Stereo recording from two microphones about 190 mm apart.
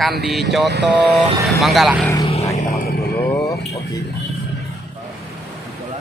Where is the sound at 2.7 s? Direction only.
55° left (ahead or behind).